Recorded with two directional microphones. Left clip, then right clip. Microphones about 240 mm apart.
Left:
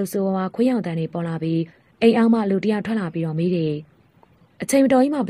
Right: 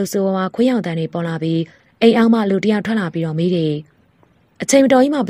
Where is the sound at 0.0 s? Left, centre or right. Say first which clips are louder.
Right 5 dB; right.